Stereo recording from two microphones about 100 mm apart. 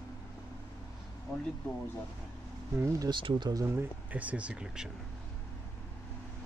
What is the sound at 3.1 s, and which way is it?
Speech, 50° right (ahead or behind).